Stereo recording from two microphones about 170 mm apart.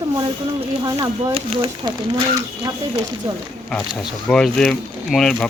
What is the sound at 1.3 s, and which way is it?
Speech, 30° right (ahead or behind).